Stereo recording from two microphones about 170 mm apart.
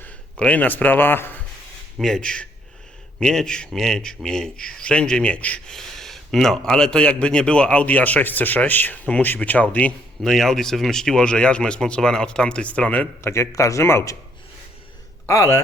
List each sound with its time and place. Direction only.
0.0 s speech: 10° left (ahead or behind)
15.3 s speech: 15° left (ahead or behind)